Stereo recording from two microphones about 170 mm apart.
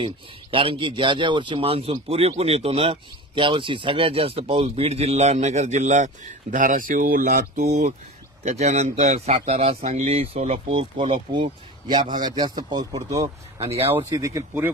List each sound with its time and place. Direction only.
0.0 s speech: 30° right (ahead or behind); by 7.6 s 55° right (ahead or behind)
7.6 s speech: 40° right (ahead or behind); by 13.3 s 20° right (ahead or behind)
13.6 s speech: 35° right (ahead or behind)
13.8 s speech: 15° right (ahead or behind)